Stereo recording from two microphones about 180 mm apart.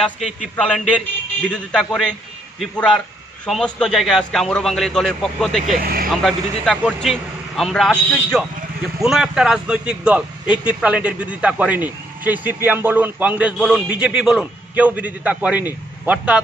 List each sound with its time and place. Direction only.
0.0 s a man's voice: centre (ahead or behind)
5.8 s speech: 55° right (ahead or behind)
6.0 s a man's voice: centre (ahead or behind)